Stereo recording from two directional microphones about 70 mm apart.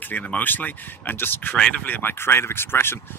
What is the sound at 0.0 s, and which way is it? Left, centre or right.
Speech, left.